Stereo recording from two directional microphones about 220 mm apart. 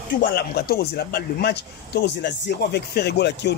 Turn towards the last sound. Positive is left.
turn(degrees=50)  # may be behind; listen again after turning